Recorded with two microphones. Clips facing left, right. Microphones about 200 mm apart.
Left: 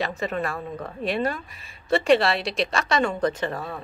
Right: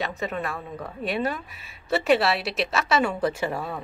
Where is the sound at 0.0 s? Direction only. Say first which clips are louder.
Left 2 dB; centre (ahead or behind).